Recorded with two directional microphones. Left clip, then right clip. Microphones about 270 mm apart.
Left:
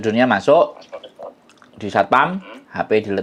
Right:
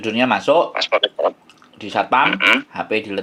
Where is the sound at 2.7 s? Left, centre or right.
Left.